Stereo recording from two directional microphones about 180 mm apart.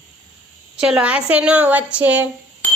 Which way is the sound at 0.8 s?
5° right (ahead or behind).